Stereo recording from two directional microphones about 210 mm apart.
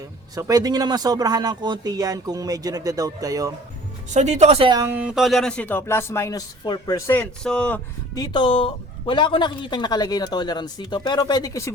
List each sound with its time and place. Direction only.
0.3 s speech: 15° right (ahead or behind)
4.1 s speech: 35° right (ahead or behind); by 7.8 s 5° left (ahead or behind)
8.1 s speech: 20° left (ahead or behind)